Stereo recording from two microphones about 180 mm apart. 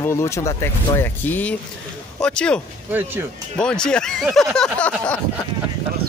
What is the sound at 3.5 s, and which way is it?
Speech, 5° left (ahead or behind).